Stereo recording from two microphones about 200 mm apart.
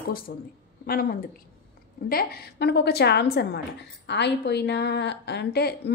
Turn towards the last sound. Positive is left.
turn(degrees=55)  # may be behind; listen again after turning